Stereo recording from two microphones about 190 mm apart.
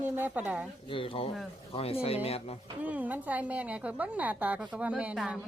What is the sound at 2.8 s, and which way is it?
A woman's voice, 10° right (ahead or behind).